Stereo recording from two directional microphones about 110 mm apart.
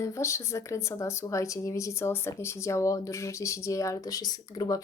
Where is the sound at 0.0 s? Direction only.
25° left (ahead or behind).